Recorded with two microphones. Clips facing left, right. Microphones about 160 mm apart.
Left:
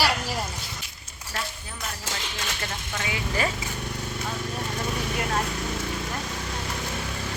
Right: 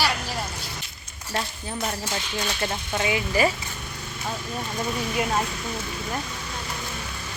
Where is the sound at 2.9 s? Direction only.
15° right (ahead or behind).